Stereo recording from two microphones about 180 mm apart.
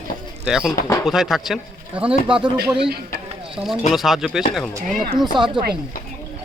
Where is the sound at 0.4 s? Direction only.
5° right (ahead or behind).